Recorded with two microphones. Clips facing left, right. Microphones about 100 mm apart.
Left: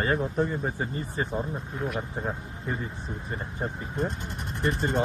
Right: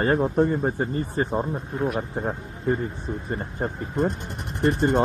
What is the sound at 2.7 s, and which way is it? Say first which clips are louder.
Speech: right 9 dB; 45° right (ahead or behind).